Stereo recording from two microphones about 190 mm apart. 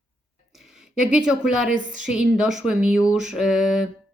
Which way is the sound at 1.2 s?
5° right (ahead or behind).